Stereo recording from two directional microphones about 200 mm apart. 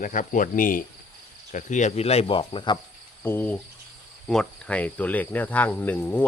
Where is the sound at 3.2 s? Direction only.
10° left (ahead or behind).